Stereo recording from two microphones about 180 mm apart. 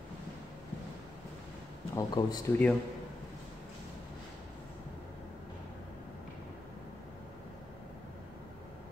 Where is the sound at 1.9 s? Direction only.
20° left (ahead or behind).